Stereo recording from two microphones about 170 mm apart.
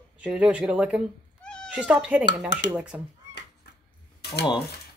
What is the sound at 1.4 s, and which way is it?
Cat, 5° left (ahead or behind).